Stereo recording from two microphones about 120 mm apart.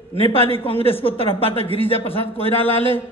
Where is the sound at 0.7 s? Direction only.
50° left (ahead or behind).